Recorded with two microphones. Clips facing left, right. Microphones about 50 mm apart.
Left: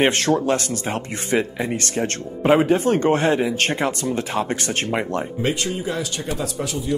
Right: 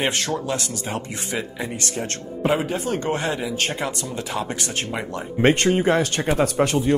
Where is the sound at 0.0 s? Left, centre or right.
Left.